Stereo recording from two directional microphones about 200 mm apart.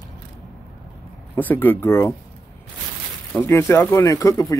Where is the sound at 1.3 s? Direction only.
10° left (ahead or behind).